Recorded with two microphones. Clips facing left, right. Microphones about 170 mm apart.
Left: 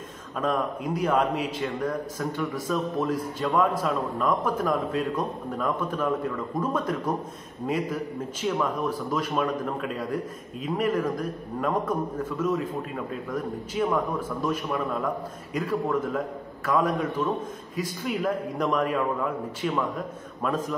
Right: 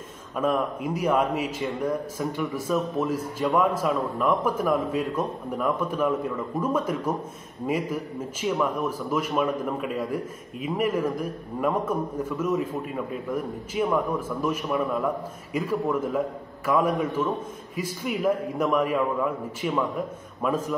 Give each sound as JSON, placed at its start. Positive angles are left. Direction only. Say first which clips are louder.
{"t": 0.4, "sound": "a man's voice", "louder": "right 2 dB", "side_deg": -10}